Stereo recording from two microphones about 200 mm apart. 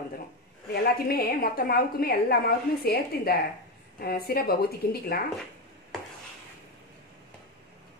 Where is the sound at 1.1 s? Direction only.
45° left (ahead or behind).